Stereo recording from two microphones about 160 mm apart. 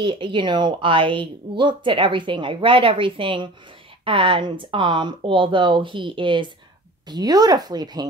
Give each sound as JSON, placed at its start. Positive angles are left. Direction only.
{"t": 0.0, "sound": "a woman's voice", "side_deg": -30}